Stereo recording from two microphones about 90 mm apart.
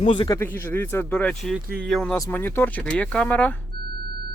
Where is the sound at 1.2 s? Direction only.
10° left (ahead or behind).